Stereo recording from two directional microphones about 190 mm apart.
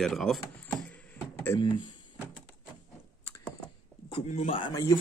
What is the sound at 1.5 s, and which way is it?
Speech, 25° left (ahead or behind).